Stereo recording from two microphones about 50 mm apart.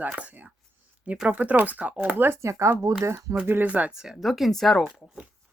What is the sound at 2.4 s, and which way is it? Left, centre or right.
Speech, right.